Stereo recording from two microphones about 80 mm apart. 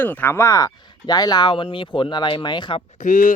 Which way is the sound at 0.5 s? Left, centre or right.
Left.